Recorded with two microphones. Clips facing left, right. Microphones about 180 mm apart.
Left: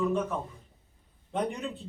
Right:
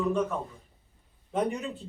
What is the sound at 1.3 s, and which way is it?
Speech, centre (ahead or behind).